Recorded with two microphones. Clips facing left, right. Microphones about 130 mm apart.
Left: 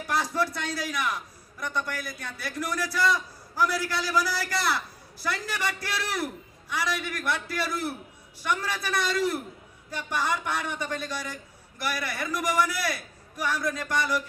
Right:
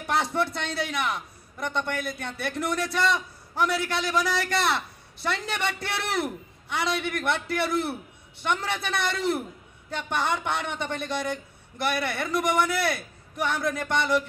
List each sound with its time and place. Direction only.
0.0 s a man's voice: 25° right (ahead or behind)